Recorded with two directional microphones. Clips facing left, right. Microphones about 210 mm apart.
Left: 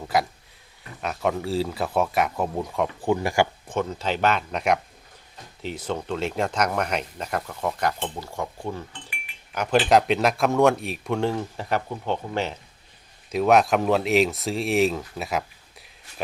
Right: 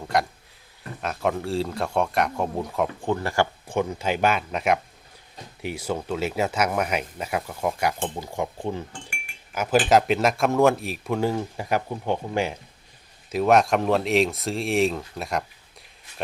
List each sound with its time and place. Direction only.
0.1 s speech: 5° left (ahead or behind)
3.1 s speech: 15° left (ahead or behind)
3.7 s speech: 10° right (ahead or behind)
8.9 s cutlery: 50° right (ahead or behind)
9.5 s speech: 5° right (ahead or behind)
13.3 s speech: centre (ahead or behind)